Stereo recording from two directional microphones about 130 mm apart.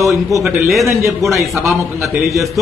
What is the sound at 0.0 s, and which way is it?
Speech, 25° right (ahead or behind).